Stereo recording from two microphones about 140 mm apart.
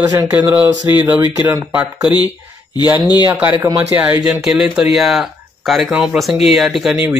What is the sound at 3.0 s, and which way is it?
Speech, 30° left (ahead or behind).